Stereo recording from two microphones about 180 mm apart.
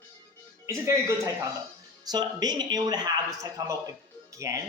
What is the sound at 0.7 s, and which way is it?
A man's voice, 15° right (ahead or behind).